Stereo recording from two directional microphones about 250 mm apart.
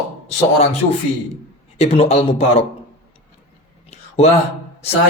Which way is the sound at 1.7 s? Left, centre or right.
Left.